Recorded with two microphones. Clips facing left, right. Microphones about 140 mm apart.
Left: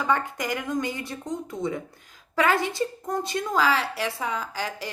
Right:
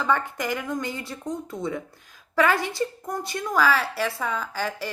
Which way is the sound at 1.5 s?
20° left (ahead or behind).